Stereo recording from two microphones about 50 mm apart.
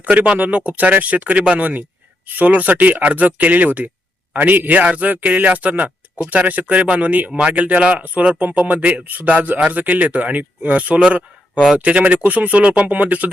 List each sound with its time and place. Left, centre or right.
0.0 s speech: right
11.5 s speech: centre
11.8 s speech: right